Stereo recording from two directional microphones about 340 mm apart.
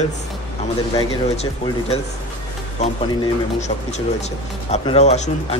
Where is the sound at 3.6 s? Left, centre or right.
Centre.